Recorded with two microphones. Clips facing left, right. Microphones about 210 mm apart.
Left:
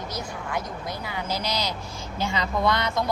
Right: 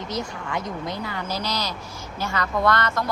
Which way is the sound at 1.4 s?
15° left (ahead or behind).